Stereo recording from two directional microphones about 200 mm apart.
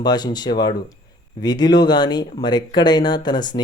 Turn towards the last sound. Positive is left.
turn(degrees=20)  # may be behind; listen again after turning